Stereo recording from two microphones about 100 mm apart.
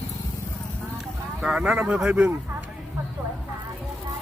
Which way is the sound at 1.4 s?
5° right (ahead or behind).